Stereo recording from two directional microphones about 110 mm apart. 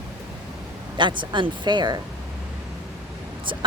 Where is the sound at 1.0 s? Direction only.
45° right (ahead or behind).